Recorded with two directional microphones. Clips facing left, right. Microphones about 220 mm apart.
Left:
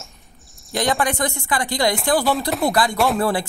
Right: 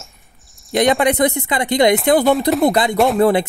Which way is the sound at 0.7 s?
20° right (ahead or behind).